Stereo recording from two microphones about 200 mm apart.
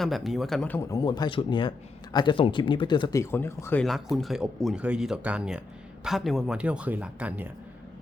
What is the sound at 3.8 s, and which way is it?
Speech, centre (ahead or behind).